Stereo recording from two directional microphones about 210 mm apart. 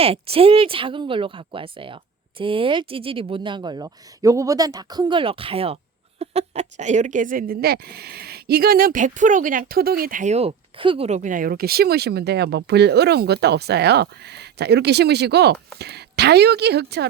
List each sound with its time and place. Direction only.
0.0 s a woman's voice: 30° right (ahead or behind); by 17.1 s 50° right (ahead or behind)